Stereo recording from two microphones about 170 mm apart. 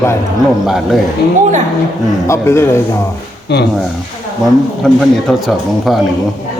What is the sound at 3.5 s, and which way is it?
Speech, 80° left.